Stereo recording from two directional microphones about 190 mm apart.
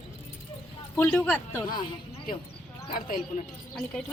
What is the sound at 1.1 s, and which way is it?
Speech, 5° left (ahead or behind).